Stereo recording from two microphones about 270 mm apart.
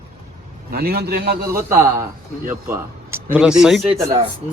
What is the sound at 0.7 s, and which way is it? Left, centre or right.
Speech, right.